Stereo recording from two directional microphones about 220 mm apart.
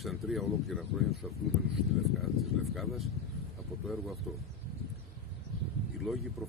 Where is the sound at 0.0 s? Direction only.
Centre (ahead or behind).